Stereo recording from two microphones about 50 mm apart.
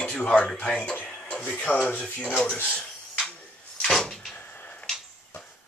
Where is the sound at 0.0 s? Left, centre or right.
Centre.